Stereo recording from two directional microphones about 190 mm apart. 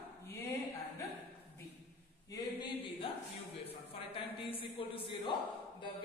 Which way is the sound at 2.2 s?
20° left (ahead or behind).